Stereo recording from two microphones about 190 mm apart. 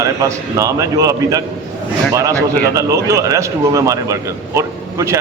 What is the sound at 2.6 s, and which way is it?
A man's voice, 15° right (ahead or behind).